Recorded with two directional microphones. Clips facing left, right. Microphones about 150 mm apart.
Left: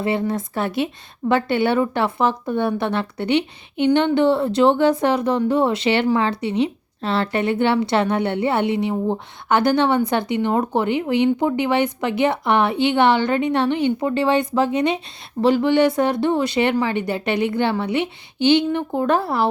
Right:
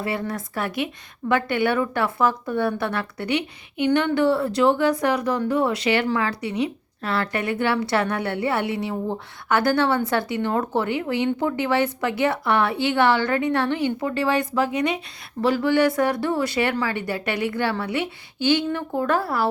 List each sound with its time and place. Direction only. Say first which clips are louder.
0.0 s speech: left 5 dB; 25° left (ahead or behind)